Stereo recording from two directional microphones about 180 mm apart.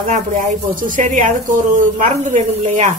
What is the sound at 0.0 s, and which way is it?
Speech, 45° right (ahead or behind).